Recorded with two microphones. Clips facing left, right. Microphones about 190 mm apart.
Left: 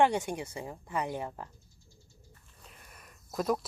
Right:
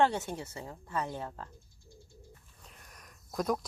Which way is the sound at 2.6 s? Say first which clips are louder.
Left 1 dB; 5° left (ahead or behind).